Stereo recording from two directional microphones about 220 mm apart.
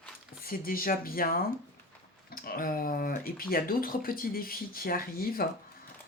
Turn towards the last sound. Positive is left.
turn(degrees=40)  # may be behind; listen again after turning